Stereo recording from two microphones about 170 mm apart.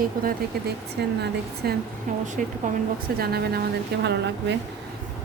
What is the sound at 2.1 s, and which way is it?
Speech, 50° right (ahead or behind).